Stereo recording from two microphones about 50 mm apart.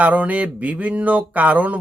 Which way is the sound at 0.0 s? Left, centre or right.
Right.